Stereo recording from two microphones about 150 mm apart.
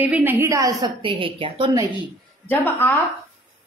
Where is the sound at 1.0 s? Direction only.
35° right (ahead or behind).